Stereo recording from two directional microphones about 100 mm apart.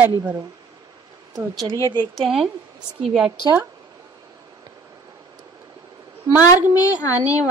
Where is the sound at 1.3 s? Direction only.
40° right (ahead or behind).